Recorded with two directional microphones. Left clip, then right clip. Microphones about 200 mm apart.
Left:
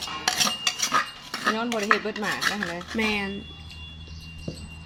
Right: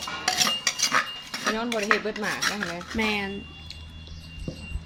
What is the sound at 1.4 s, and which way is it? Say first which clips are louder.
Speech: left 1 dB; 5° left (ahead or behind).